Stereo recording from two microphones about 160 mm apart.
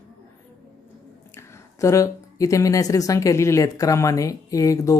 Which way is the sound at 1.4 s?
20° left (ahead or behind).